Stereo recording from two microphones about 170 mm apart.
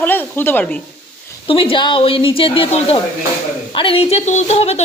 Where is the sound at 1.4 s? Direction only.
30° left (ahead or behind).